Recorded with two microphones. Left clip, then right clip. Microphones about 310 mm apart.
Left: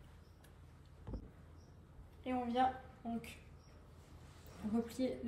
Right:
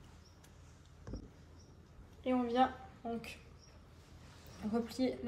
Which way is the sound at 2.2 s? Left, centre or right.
Right.